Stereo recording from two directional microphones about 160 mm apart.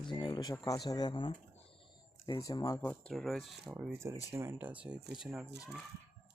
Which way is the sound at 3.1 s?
Centre (ahead or behind).